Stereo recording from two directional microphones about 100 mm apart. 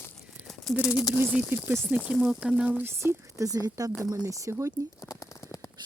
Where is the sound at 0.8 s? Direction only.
35° left (ahead or behind).